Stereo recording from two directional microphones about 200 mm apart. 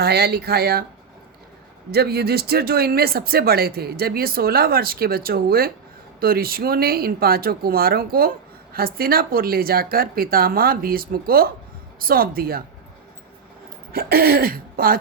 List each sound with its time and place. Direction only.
0.0 s speech: 55° right (ahead or behind)
1.9 s speech: 50° right (ahead or behind)
13.9 s speech: 50° right (ahead or behind)